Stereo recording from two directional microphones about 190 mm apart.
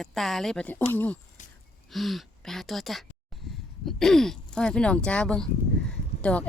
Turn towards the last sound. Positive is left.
turn(degrees=5)  # may be behind; listen again after turning